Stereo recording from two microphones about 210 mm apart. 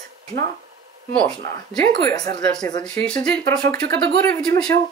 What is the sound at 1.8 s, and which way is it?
Speech, 20° left (ahead or behind).